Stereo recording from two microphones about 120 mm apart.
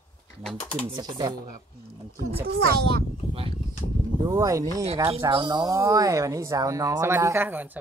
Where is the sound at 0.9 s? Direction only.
35° right (ahead or behind).